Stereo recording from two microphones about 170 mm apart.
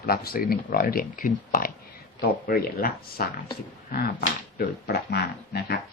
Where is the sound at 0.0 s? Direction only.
60° left (ahead or behind).